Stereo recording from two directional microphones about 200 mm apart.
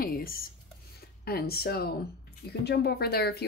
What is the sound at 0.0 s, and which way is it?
Writing, 50° left (ahead or behind).